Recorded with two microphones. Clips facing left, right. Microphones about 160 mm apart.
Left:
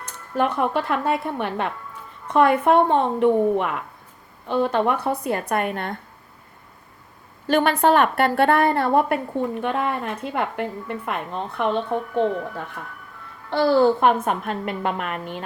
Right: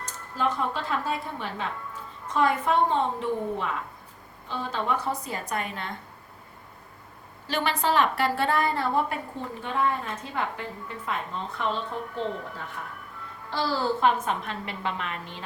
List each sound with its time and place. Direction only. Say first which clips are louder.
0.0 s a woman's voice: left 6 dB; 65° left (ahead or behind)
7.4 s a woman's voice: left 9 dB; 55° left (ahead or behind)